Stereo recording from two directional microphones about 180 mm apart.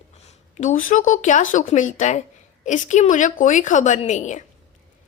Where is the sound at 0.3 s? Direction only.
45° left (ahead or behind).